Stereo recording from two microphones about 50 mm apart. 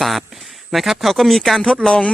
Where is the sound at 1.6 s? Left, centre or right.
Centre.